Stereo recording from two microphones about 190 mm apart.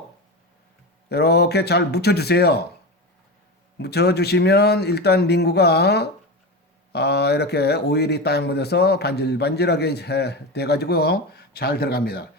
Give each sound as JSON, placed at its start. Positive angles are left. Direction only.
{"t": 1.1, "sound": "a man's voice", "side_deg": 60}
{"t": 3.8, "sound": "a man's voice", "side_deg": 60}